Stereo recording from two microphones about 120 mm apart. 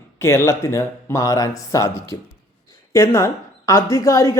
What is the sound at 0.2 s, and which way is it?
Speech, 20° left (ahead or behind).